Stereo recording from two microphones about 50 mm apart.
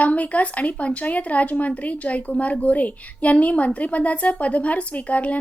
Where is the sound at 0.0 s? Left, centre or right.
Left.